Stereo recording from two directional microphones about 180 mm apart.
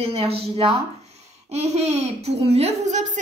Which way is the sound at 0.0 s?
35° right (ahead or behind).